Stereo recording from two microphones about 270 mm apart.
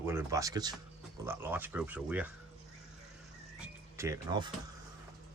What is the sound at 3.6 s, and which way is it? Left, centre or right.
Music, centre.